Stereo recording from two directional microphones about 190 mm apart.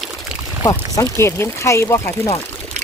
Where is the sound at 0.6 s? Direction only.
20° left (ahead or behind).